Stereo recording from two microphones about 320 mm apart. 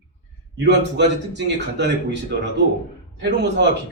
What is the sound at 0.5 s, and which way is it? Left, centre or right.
A man's voice, right.